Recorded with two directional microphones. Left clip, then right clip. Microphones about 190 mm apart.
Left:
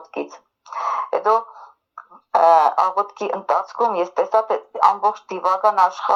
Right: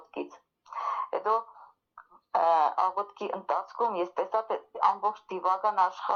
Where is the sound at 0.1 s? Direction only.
30° left (ahead or behind).